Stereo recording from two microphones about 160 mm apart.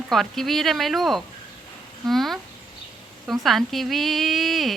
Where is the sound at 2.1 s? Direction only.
Centre (ahead or behind).